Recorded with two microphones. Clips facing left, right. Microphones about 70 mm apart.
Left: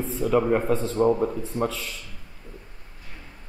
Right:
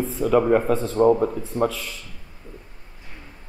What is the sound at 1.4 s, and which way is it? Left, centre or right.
Speech, centre.